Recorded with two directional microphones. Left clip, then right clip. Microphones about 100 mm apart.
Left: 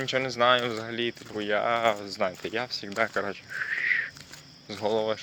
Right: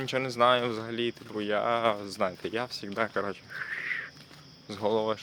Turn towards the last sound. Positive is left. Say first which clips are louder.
# left 1 dB
turn(degrees=-35)  # may be behind; listen again after turning